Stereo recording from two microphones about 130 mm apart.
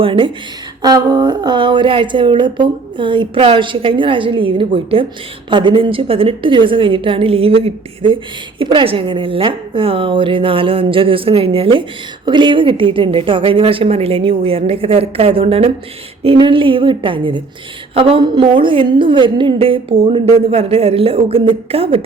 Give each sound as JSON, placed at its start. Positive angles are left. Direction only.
{"t": 0.0, "sound": "a woman's voice", "side_deg": -40}